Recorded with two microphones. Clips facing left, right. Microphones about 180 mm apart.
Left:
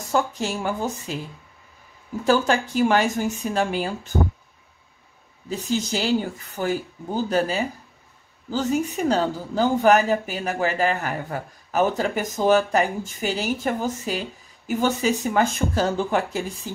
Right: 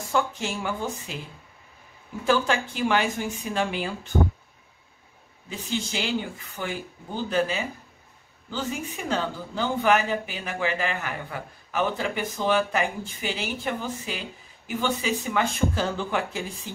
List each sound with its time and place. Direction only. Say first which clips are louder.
0.1 s speech: left 3 dB; 40° left (ahead or behind)
2.2 s speech: left 3 dB; 40° left (ahead or behind)
5.5 s speech: left 6 dB; 40° left (ahead or behind)